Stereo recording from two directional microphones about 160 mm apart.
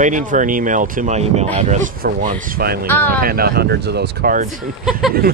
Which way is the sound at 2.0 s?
60° right (ahead or behind).